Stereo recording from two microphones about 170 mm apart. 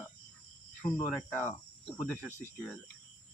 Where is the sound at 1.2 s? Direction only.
5° left (ahead or behind).